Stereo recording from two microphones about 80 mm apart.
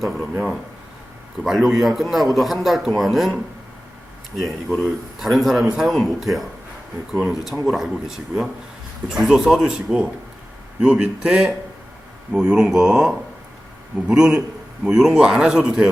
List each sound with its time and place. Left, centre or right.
0.2 s speech: centre
1.5 s speech: centre
4.4 s speech: centre
7.1 s speech: centre
7.3 s speech: centre